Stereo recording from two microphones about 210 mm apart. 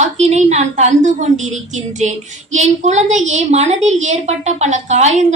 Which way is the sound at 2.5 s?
35° right (ahead or behind).